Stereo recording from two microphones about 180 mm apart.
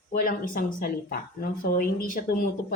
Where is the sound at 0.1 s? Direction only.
50° left (ahead or behind).